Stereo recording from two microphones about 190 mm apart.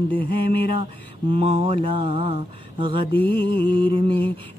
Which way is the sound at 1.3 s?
30° right (ahead or behind).